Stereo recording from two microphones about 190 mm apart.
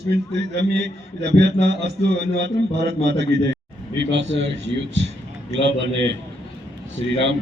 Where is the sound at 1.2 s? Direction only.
65° right (ahead or behind).